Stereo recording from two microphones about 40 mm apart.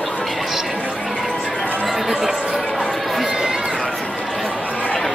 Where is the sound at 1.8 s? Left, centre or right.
Centre.